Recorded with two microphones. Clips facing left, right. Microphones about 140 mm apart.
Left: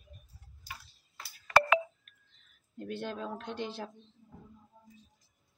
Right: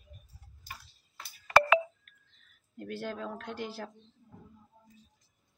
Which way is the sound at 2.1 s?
20° left (ahead or behind).